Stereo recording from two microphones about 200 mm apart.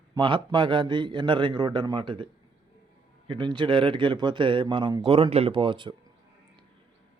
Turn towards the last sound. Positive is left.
turn(degrees=-25)  # may be behind; listen again after turning